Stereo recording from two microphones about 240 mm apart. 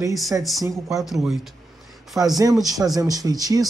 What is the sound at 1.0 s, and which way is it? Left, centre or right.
Speech, centre.